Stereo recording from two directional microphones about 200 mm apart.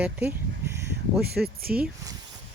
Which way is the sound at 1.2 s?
50° right (ahead or behind).